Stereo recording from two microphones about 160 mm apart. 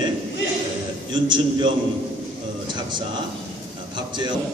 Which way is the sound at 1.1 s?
30° right (ahead or behind).